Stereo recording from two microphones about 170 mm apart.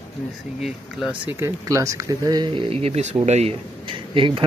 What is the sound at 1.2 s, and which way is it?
Speech, 15° right (ahead or behind).